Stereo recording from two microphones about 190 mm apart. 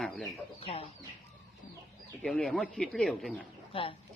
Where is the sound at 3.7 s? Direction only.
30° left (ahead or behind).